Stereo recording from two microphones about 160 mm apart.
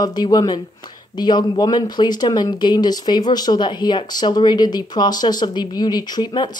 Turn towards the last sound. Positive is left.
turn(degrees=25)  # may be behind; listen again after turning